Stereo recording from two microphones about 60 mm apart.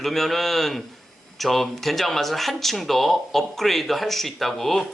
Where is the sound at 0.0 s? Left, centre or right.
Centre.